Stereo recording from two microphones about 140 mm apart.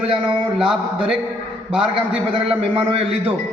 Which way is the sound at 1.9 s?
40° right (ahead or behind).